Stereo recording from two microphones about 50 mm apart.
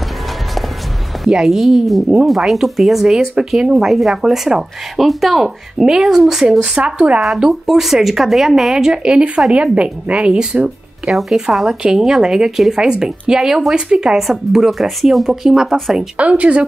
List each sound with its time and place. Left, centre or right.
1.3 s a woman's voice: centre
11.1 s speech: centre
14.5 s speech: centre
16.2 s a woman's voice: right